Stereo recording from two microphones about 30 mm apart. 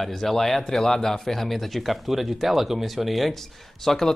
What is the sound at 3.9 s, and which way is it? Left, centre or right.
Speech, centre.